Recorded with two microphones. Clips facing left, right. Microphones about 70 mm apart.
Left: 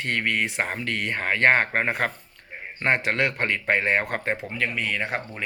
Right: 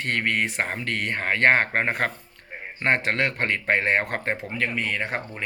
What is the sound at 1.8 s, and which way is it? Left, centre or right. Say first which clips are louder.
Speech: even; right.